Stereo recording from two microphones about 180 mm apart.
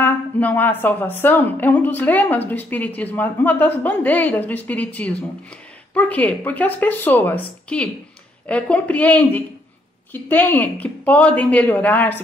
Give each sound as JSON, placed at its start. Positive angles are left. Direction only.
{"t": 0.0, "sound": "a woman's voice", "side_deg": 10}